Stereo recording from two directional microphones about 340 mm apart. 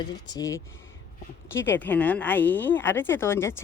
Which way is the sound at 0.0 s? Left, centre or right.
Centre.